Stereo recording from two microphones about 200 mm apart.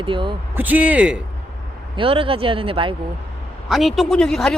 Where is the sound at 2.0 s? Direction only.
25° right (ahead or behind).